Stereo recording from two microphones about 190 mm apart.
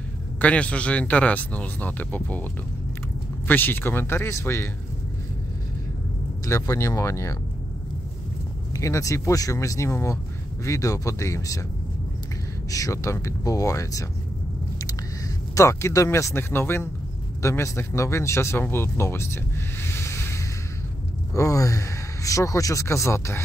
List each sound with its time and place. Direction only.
0.4 s speech: 5° left (ahead or behind)
3.4 s speech: 10° left (ahead or behind)
6.4 s speech: 15° left (ahead or behind)
8.7 s speech: 15° left (ahead or behind)
12.7 s speech: 15° left (ahead or behind)
15.5 s speech: 15° left (ahead or behind)